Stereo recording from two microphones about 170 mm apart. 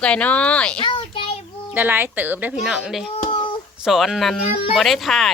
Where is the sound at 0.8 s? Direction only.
30° left (ahead or behind).